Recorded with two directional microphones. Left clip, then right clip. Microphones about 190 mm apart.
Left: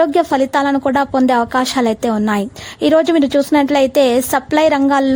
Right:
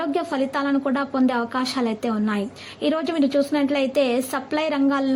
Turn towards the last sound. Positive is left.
turn(degrees=45)  # may be behind; listen again after turning